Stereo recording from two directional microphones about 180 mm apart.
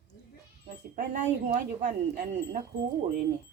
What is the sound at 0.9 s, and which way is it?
Speech, 45° right (ahead or behind).